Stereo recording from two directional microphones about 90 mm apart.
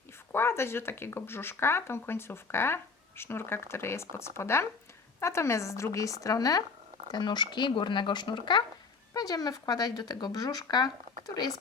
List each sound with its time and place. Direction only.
0.3 s speech: 25° left (ahead or behind); by 10.9 s 50° left (ahead or behind)